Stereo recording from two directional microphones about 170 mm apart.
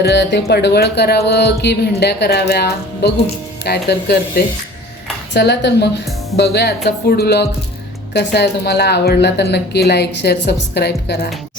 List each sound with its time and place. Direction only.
0.0 s a woman's voice: 80° left
5.3 s a woman's voice: 85° left